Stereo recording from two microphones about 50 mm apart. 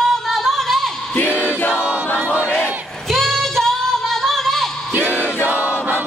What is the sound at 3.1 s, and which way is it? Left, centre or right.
Singing, centre.